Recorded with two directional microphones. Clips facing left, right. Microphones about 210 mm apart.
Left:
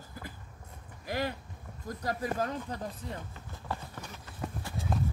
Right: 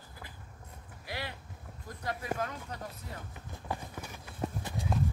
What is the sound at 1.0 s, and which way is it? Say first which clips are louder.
Speech: left 7 dB; 45° left (ahead or behind).